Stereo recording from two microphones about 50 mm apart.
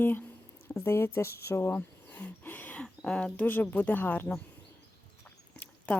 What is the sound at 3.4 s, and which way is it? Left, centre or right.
Speech, left.